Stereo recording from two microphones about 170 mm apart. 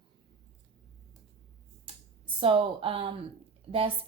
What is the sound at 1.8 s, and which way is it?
Speech, 30° right (ahead or behind).